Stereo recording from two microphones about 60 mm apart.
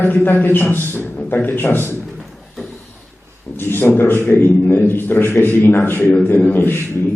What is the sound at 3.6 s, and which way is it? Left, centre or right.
A man's voice, left.